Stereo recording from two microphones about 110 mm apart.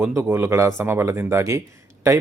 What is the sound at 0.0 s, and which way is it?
Speech, 25° right (ahead or behind).